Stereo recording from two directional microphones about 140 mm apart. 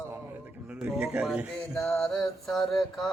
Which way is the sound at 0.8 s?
10° right (ahead or behind).